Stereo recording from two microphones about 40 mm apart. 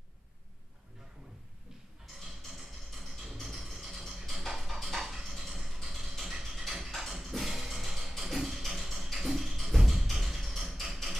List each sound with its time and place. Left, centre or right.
2.1 s music: centre
4.7 s a sound: centre
7.4 s music: centre